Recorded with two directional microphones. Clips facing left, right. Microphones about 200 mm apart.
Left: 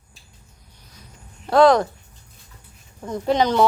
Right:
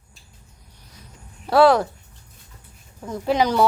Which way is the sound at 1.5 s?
10° right (ahead or behind).